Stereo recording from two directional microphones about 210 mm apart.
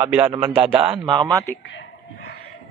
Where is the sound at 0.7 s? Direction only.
25° right (ahead or behind).